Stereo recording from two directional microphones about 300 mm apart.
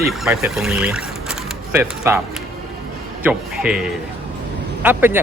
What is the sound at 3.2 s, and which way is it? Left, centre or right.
Speech, centre.